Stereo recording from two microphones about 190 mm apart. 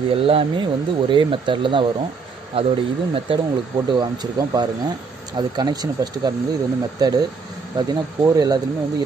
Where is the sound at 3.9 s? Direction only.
20° right (ahead or behind).